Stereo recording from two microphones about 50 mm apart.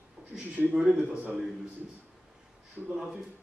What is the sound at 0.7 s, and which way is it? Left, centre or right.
Speech, centre.